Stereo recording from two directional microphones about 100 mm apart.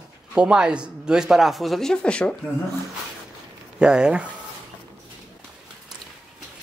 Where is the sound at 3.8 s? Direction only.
10° right (ahead or behind).